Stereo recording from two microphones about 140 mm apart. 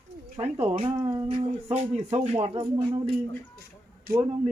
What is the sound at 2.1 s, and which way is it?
Speech, 45° right (ahead or behind).